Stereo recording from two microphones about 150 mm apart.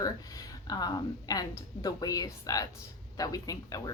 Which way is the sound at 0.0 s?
25° left (ahead or behind).